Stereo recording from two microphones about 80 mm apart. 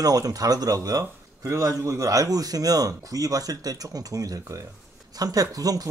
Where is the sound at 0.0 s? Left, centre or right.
Right.